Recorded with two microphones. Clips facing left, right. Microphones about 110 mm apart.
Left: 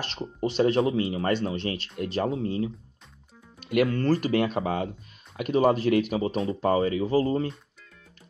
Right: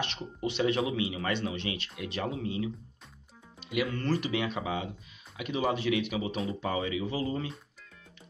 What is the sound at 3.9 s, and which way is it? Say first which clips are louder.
Speech: left 7 dB; 40° left (ahead or behind).